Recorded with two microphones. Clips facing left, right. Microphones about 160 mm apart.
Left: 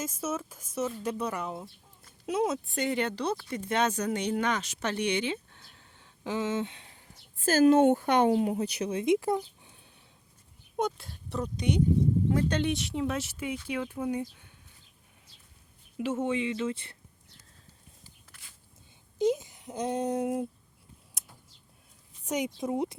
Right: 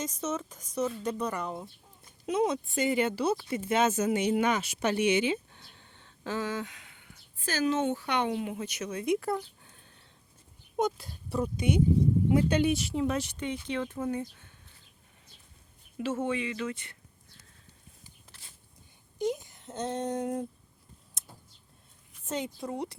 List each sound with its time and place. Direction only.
0.0 s speech: 5° left (ahead or behind)
6.2 s speech: 20° left (ahead or behind)
9.6 s a sound: 10° left (ahead or behind)
10.8 s speech: centre (ahead or behind)
16.0 s speech: 20° left (ahead or behind)
18.3 s a sound: 30° right (ahead or behind)
19.2 s speech: 20° left (ahead or behind)
22.5 s speech: 20° left (ahead or behind)